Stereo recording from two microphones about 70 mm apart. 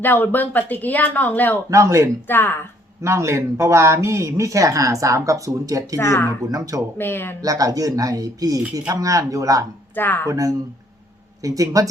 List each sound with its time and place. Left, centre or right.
0.0 s speech: left
1.7 s speech: right
2.2 s speech: left
3.0 s speech: right
6.0 s speech: left
6.5 s speech: right
7.0 s speech: left
7.4 s speech: right
9.9 s speech: left
10.2 s speech: right